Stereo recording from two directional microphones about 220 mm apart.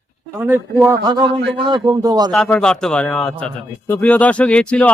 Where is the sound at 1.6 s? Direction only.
20° right (ahead or behind).